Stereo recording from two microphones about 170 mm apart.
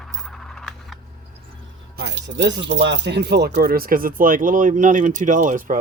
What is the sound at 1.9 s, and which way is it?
Speech, 85° right.